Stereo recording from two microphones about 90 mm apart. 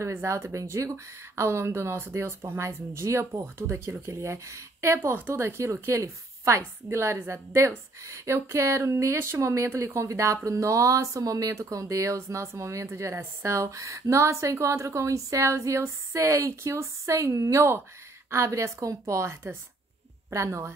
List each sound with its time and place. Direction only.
0.0 s speech: 35° right (ahead or behind)